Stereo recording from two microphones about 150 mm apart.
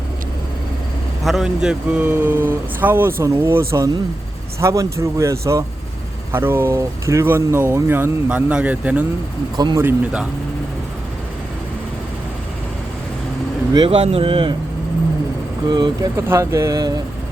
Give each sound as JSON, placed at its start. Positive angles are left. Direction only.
{"t": 1.2, "sound": "speech", "side_deg": 0}
{"t": 4.6, "sound": "a man's voice", "side_deg": -20}
{"t": 9.6, "sound": "a man's voice", "side_deg": -25}
{"t": 9.8, "sound": "speech", "side_deg": -10}
{"t": 13.7, "sound": "speech", "side_deg": -35}
{"t": 15.7, "sound": "a man's voice", "side_deg": -30}